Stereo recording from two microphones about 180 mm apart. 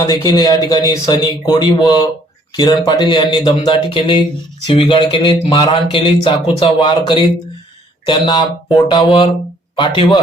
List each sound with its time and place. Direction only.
0.0 s speech: 20° left (ahead or behind)